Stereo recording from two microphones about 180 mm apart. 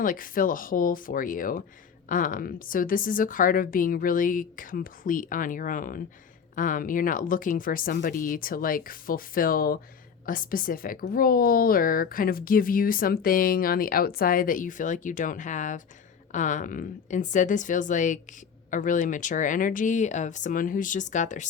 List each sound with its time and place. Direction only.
0.0 s a woman's voice: 50° left (ahead or behind)